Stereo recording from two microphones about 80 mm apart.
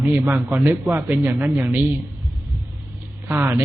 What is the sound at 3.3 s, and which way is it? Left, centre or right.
Speech, right.